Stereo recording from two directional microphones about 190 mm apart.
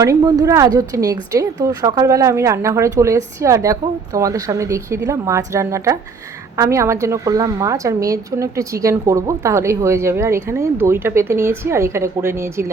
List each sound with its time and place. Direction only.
0.0 s a woman's voice: 20° right (ahead or behind)